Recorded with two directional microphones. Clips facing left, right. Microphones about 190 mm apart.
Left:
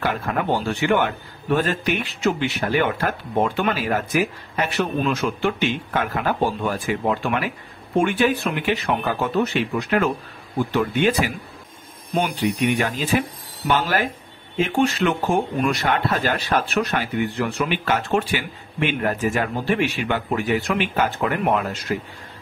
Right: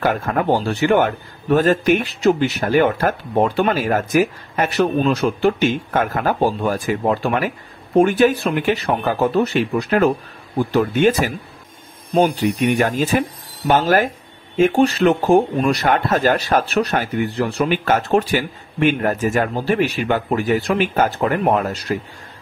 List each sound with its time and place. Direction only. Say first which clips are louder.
0.0 s a man's voice: right 5 dB; 45° right (ahead or behind)